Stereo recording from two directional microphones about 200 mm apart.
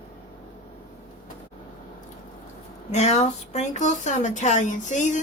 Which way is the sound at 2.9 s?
35° left (ahead or behind).